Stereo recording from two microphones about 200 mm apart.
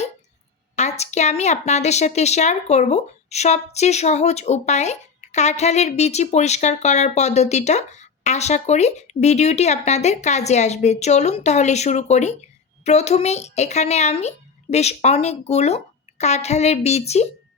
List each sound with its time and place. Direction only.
0.8 s a woman's voice: 35° left (ahead or behind)